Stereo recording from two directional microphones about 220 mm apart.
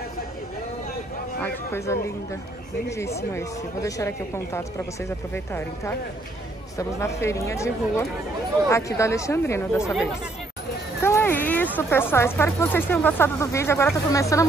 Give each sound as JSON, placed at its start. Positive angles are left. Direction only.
{"t": 1.4, "sound": "speech", "side_deg": 10}
{"t": 3.3, "sound": "speech", "side_deg": 10}
{"t": 11.0, "sound": "speech", "side_deg": 10}